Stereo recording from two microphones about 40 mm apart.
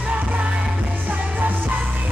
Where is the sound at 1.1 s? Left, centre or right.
Right.